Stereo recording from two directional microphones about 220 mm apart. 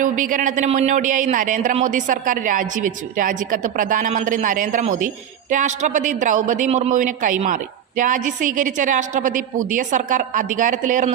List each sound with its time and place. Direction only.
0.0 s speech: 35° right (ahead or behind)